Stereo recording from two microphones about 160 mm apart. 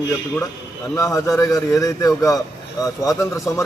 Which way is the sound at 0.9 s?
20° left (ahead or behind).